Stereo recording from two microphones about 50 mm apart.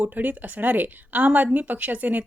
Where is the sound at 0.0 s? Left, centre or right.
Right.